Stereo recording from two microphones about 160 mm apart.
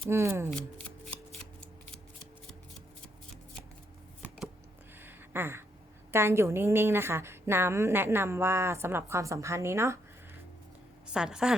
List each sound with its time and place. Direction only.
0.1 s a woman's voice: 15° right (ahead or behind)
4.9 s a sound: 15° right (ahead or behind)
6.1 s a woman's voice: 15° right (ahead or behind)
11.1 s a woman's voice: 5° right (ahead or behind)